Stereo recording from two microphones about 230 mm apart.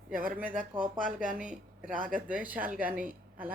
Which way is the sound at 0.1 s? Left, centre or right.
Right.